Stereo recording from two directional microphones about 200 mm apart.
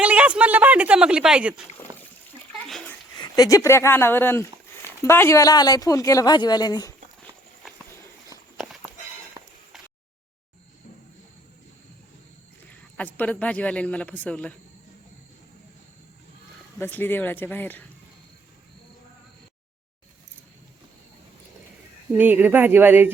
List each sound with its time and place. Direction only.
0.0 s a sound: 5° right (ahead or behind)
2.6 s a sound: 5° left (ahead or behind)
3.2 s speech: 20° left (ahead or behind)
8.5 s walk: centre (ahead or behind)
13.0 s speech: 5° left (ahead or behind)
16.7 s speech: 10° left (ahead or behind)
22.2 s speech: 10° right (ahead or behind)